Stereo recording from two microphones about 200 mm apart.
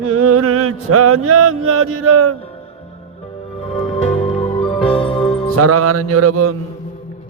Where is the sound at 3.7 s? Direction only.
30° left (ahead or behind).